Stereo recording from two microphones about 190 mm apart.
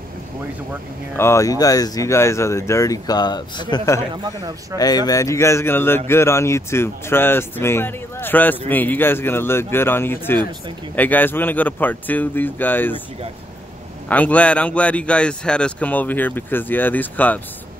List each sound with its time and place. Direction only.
1.1 s speech: 15° left (ahead or behind)
4.1 s a man's voice: 20° right (ahead or behind)
4.7 s speech: 20° left (ahead or behind)
14.0 s speech: 10° left (ahead or behind)